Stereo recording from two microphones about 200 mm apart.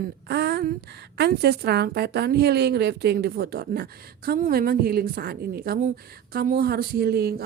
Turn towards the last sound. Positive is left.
turn(degrees=-50)  # may be behind; listen again after turning